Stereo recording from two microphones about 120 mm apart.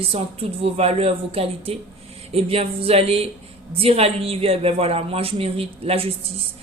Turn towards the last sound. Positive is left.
turn(degrees=-55)  # may be behind; listen again after turning